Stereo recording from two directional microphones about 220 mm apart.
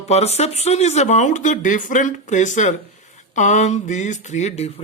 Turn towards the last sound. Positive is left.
turn(degrees=30)  # may be behind; listen again after turning